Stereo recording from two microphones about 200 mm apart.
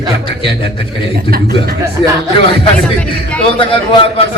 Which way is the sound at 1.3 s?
50° right (ahead or behind).